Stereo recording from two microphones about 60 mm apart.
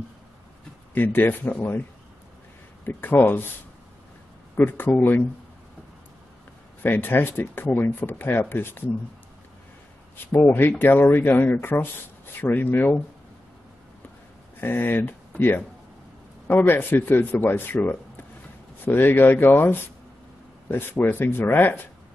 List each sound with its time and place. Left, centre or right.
0.9 s speech: left
2.8 s speech: left
4.6 s speech: left
6.8 s speech: left
10.2 s speech: left
14.6 s speech: left